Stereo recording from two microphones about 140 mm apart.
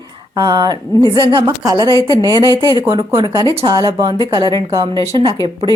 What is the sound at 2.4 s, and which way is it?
Speech, 30° left (ahead or behind).